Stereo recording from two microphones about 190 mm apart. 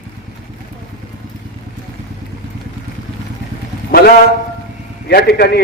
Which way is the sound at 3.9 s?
55° left (ahead or behind).